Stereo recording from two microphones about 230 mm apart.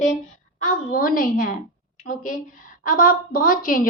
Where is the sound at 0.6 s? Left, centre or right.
Left.